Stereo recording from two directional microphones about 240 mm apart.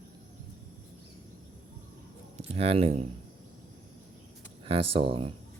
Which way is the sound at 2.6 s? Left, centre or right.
Right.